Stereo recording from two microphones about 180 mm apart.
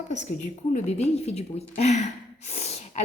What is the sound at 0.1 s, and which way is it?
A woman's voice, 40° left (ahead or behind).